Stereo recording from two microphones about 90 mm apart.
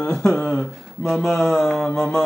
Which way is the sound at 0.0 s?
10° left (ahead or behind).